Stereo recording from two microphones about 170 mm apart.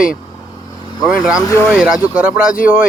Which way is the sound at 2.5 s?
55° left (ahead or behind).